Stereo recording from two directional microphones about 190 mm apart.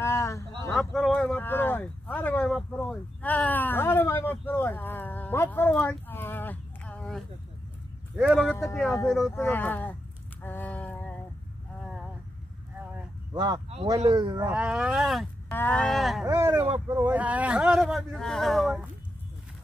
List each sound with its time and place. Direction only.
0.0 s a sound: 15° left (ahead or behind)
0.7 s speech: centre (ahead or behind)
8.5 s speech: 15° left (ahead or behind)
9.0 s speech: centre (ahead or behind)
9.3 s speech: 10° left (ahead or behind)
10.4 s a sound: 10° left (ahead or behind)
13.3 s speech: 20° right (ahead or behind)
14.5 s speech: 5° right (ahead or behind)
16.3 s speech: 20° right (ahead or behind); by 18.9 s centre (ahead or behind)